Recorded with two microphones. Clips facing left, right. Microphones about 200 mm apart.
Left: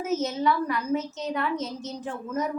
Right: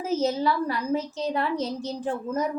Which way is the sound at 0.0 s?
30° right (ahead or behind).